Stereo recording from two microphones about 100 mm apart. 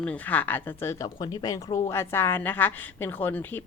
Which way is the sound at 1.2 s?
40° left (ahead or behind).